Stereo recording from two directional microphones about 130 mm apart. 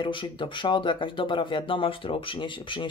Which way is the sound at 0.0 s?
40° left (ahead or behind).